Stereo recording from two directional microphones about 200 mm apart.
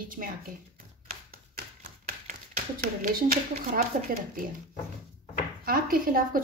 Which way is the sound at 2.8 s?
45° right (ahead or behind).